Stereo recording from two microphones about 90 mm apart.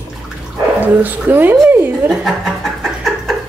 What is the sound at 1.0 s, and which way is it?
Speech, 20° right (ahead or behind).